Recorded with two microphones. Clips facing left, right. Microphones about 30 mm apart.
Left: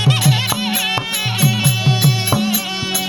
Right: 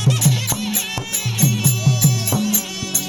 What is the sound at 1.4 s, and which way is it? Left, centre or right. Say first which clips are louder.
Music: left 1 dB; left.